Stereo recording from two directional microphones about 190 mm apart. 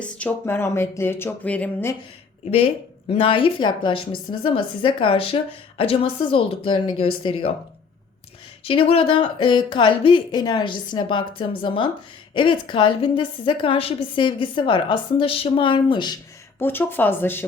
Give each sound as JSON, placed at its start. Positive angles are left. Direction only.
{"t": 0.0, "sound": "speech", "side_deg": 10}
{"t": 3.1, "sound": "a woman's voice", "side_deg": 30}
{"t": 8.6, "sound": "a woman's voice", "side_deg": 30}
{"t": 16.6, "sound": "speech", "side_deg": 10}